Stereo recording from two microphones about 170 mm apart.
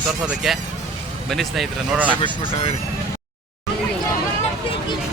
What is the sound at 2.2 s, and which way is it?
Speech, 40° left (ahead or behind).